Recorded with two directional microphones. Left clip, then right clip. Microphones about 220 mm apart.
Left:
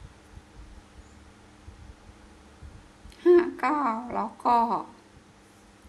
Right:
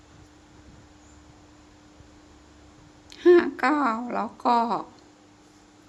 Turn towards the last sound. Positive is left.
turn(degrees=-15)  # may be behind; listen again after turning